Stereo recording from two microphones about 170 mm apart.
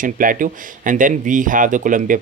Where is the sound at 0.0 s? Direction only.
55° right (ahead or behind).